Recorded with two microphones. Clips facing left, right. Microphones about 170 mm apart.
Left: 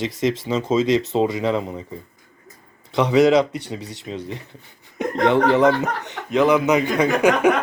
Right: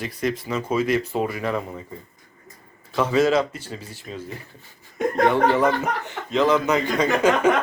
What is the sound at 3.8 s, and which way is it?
Speech, 75° left (ahead or behind).